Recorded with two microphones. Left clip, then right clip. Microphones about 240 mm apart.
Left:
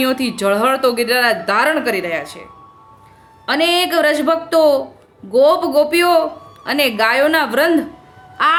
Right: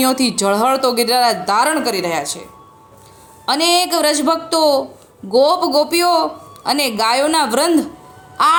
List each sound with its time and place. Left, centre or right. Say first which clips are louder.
0.0 s speech: right 1 dB; centre